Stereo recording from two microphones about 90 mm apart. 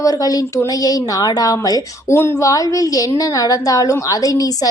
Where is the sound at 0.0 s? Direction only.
45° left (ahead or behind).